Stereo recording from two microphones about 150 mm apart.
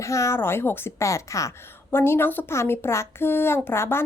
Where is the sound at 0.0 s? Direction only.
20° left (ahead or behind).